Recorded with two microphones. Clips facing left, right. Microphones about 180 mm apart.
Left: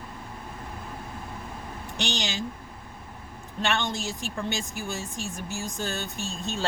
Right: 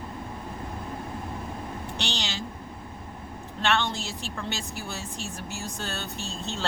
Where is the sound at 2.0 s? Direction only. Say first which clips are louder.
Left 4 dB; 15° left (ahead or behind).